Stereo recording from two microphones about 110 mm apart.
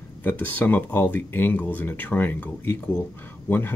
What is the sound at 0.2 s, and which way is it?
Speech, 15° left (ahead or behind).